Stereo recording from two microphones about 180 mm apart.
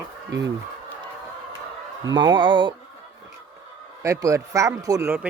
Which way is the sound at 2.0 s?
25° right (ahead or behind).